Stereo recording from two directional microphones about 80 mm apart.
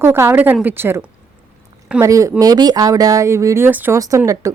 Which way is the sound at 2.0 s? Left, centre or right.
Right.